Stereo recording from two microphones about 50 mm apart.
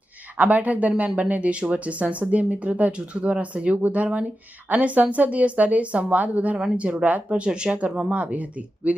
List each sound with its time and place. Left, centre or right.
0.3 s speech: right